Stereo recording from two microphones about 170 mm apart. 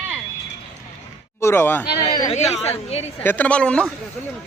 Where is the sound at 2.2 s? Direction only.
40° left (ahead or behind).